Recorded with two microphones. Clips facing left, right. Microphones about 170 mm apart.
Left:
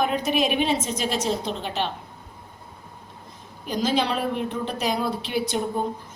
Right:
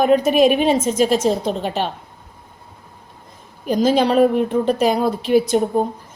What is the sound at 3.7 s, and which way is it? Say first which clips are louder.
A woman's voice: right 8 dB; 50° right (ahead or behind).